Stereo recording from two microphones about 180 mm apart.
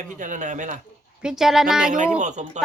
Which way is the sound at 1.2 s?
5° right (ahead or behind).